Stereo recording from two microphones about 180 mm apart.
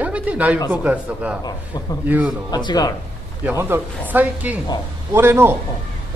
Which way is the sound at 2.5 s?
25° left (ahead or behind).